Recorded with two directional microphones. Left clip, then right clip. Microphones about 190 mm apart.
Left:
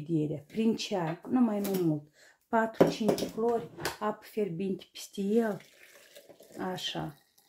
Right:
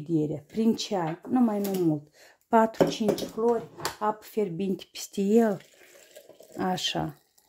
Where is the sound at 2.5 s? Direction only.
45° right (ahead or behind).